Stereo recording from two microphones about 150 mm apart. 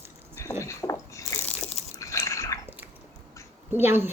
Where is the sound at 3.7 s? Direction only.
15° right (ahead or behind).